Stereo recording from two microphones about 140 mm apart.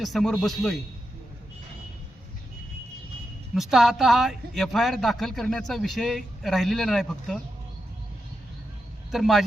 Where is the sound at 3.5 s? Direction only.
Centre (ahead or behind).